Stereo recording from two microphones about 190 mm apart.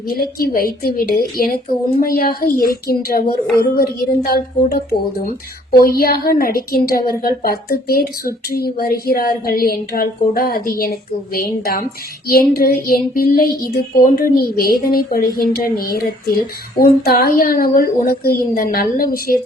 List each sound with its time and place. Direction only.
0.1 s speech: 50° left (ahead or behind)